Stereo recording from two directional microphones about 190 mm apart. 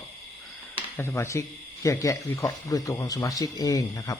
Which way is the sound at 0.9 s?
15° left (ahead or behind).